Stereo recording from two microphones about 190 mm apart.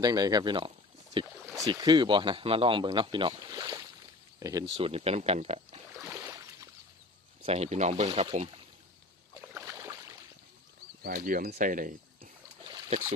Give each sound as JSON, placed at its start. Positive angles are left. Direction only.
{"t": 0.0, "sound": "speech", "side_deg": -20}
{"t": 4.7, "sound": "speech", "side_deg": -30}
{"t": 6.1, "sound": "a sound", "side_deg": -15}
{"t": 7.4, "sound": "speech", "side_deg": -35}
{"t": 9.6, "sound": "a sound", "side_deg": -15}
{"t": 11.2, "sound": "speech", "side_deg": -50}
{"t": 12.2, "sound": "boat", "side_deg": -25}